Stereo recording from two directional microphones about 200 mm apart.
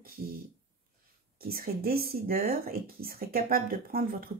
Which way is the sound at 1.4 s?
50° right (ahead or behind).